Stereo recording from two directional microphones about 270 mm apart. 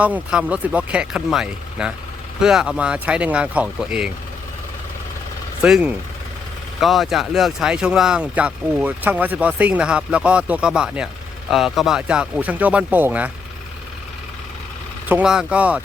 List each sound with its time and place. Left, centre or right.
0.0 s speech: centre
5.6 s speech: centre
15.1 s speech: centre